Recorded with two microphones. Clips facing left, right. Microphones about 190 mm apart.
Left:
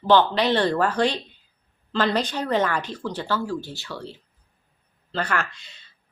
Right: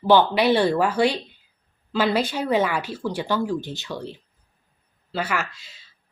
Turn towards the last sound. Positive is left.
turn(degrees=0)  # may be behind; listen again after turning